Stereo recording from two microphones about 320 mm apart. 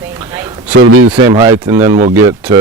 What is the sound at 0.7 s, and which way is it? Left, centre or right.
Speech, right.